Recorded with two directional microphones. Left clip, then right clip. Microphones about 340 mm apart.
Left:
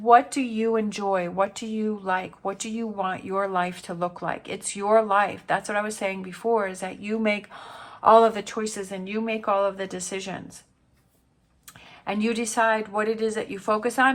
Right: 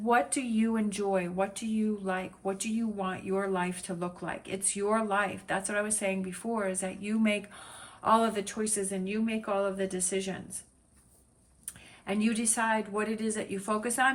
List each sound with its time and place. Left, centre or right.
0.0 s speech: centre
12.0 s speech: centre